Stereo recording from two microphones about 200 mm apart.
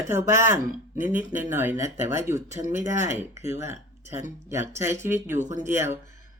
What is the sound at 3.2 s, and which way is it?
Speech, 10° right (ahead or behind).